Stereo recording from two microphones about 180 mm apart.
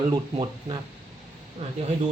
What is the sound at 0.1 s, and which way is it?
Speech, 25° right (ahead or behind).